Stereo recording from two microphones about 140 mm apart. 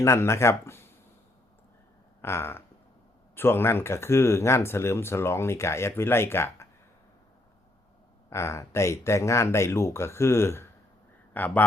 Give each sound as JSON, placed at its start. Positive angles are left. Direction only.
{"t": 0.0, "sound": "speech", "side_deg": 20}
{"t": 2.2, "sound": "speech", "side_deg": 15}
{"t": 8.3, "sound": "speech", "side_deg": 20}